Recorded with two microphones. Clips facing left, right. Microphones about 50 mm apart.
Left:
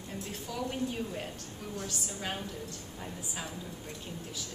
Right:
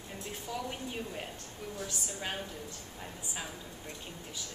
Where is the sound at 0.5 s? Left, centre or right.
Centre.